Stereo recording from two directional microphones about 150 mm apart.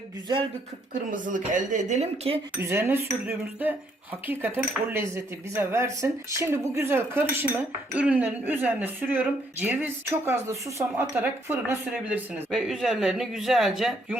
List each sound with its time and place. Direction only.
0.9 s speech: 60° right (ahead or behind)
2.6 s speech: 15° right (ahead or behind)
12.5 s speech: centre (ahead or behind)